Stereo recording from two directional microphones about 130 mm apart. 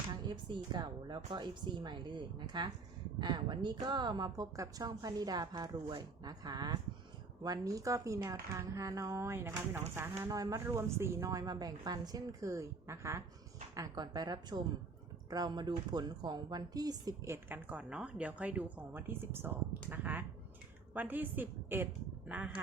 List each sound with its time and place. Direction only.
0.3 s a woman's voice: 35° right (ahead or behind)
13.7 s a woman's voice: 30° right (ahead or behind); by 22.6 s 10° right (ahead or behind)